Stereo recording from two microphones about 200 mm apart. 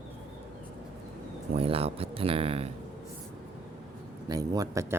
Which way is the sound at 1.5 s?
30° right (ahead or behind).